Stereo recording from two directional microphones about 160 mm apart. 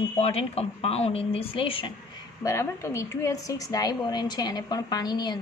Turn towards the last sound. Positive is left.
turn(degrees=25)  # may be behind; listen again after turning